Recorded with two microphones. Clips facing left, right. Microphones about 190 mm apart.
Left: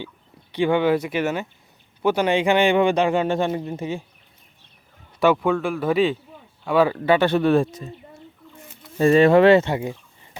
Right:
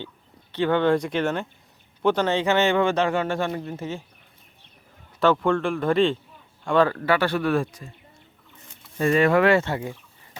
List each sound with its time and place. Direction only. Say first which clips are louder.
0.5 s speech: left 1 dB; 10° left (ahead or behind)
5.2 s a man's voice: left 2 dB; 10° left (ahead or behind)
9.0 s a man's voice: left 5 dB; 30° left (ahead or behind)